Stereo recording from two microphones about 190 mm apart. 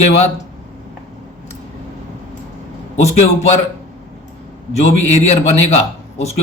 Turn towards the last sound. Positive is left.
turn(degrees=35)  # may be behind; listen again after turning